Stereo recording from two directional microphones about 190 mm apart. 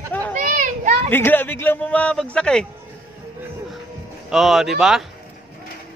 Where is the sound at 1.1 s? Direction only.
10° left (ahead or behind).